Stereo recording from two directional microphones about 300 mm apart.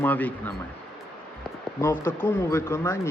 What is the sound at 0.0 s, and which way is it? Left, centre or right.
Speech, centre.